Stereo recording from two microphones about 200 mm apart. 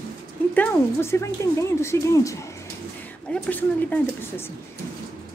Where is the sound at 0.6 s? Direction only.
10° left (ahead or behind).